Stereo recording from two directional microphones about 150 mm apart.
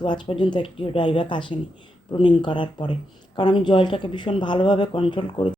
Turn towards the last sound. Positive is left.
turn(degrees=35)  # may be behind; listen again after turning